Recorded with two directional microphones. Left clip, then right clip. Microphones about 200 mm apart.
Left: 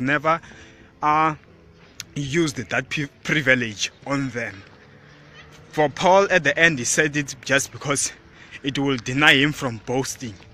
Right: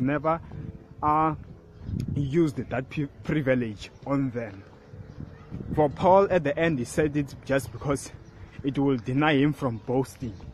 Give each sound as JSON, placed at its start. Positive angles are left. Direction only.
{"t": 0.0, "sound": "speech", "side_deg": 0}
{"t": 5.8, "sound": "speech", "side_deg": 0}